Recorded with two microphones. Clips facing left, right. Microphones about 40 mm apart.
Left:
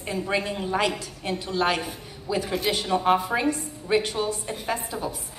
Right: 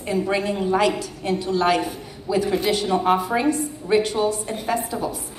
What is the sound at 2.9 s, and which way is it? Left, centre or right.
Speech, centre.